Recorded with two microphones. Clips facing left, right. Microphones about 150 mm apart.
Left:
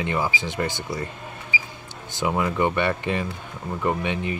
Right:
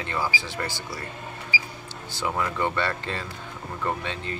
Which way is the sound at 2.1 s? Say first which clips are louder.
Left 4 dB; 20° left (ahead or behind).